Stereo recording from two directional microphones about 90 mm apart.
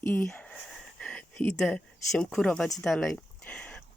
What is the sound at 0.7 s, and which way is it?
Wheeze, 10° left (ahead or behind).